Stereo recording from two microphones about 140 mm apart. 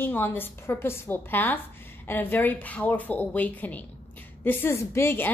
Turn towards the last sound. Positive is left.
turn(degrees=15)  # may be behind; listen again after turning